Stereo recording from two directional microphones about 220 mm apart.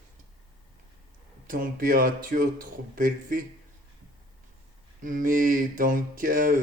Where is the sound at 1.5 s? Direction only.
40° right (ahead or behind).